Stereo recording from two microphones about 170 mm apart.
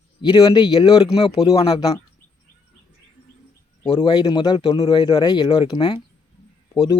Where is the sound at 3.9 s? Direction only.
25° left (ahead or behind).